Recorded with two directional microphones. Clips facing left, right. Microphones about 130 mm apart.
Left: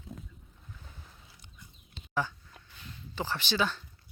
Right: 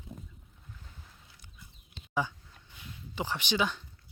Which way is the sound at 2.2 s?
15° right (ahead or behind).